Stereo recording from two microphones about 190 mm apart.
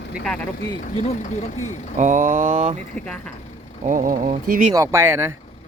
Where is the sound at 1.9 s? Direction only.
40° right (ahead or behind).